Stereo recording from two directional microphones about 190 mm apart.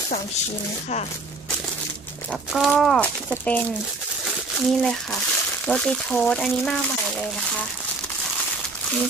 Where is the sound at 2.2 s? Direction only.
Centre (ahead or behind).